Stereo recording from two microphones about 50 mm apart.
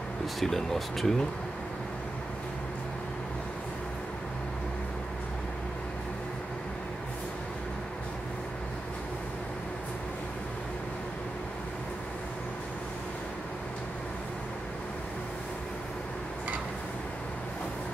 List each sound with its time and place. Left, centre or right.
0.4 s speech: centre